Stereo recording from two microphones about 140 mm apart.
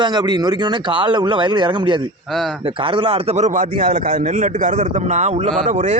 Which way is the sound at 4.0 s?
65° right (ahead or behind).